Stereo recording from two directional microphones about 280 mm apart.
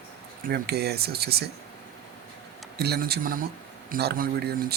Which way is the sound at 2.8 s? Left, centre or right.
Right.